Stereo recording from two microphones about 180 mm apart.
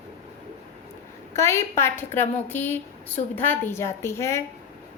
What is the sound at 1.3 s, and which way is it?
Speech, 15° left (ahead or behind).